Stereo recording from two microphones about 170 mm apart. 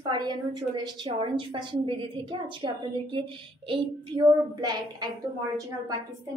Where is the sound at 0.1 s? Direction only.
25° right (ahead or behind).